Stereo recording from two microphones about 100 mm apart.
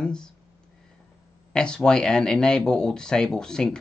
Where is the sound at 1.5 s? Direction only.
10° left (ahead or behind).